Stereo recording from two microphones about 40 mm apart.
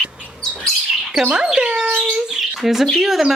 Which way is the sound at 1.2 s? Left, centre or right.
Centre.